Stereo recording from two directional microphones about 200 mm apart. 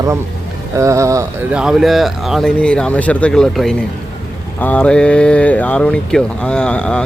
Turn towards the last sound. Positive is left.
turn(degrees=5)  # may be behind; listen again after turning